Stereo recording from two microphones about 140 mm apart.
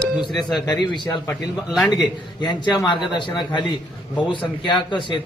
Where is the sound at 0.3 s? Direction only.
30° left (ahead or behind).